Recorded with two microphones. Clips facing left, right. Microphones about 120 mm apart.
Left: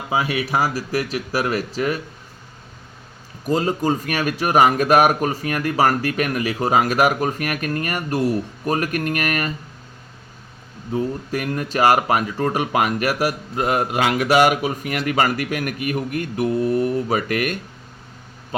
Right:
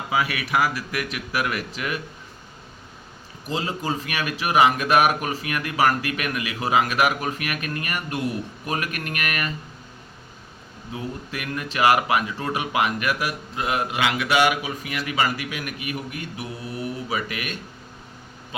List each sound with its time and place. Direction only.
0.1 s speech: 30° left (ahead or behind)
3.5 s speech: 40° left (ahead or behind)
10.9 s speech: 40° left (ahead or behind)